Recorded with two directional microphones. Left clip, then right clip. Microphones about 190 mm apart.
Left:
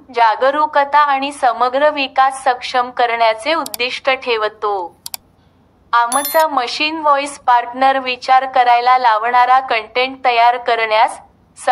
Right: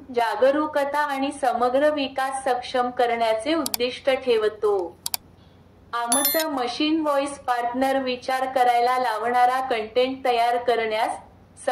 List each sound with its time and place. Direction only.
0.1 s a woman's voice: 30° left (ahead or behind)
4.7 s computer keyboard: centre (ahead or behind)
6.2 s speech: centre (ahead or behind)
6.5 s a woman's voice: 30° left (ahead or behind)